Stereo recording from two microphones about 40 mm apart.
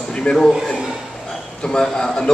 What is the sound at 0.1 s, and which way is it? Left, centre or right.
Speech, left.